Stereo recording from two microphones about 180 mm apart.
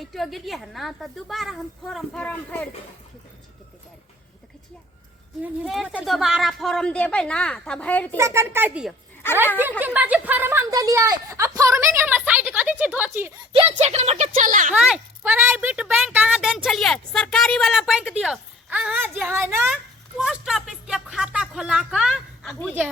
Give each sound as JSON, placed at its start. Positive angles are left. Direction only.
{"t": 0.0, "sound": "a woman's voice", "side_deg": 0}
{"t": 5.4, "sound": "a woman's voice", "side_deg": -5}
{"t": 8.1, "sound": "speech", "side_deg": -15}
{"t": 13.7, "sound": "speech", "side_deg": -40}
{"t": 14.7, "sound": "a woman's voice", "side_deg": -5}